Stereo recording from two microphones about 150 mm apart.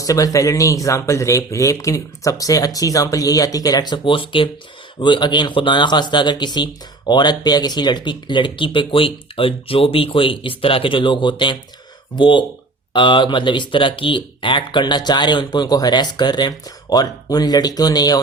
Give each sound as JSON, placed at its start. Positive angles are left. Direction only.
{"t": 0.0, "sound": "speech", "side_deg": 25}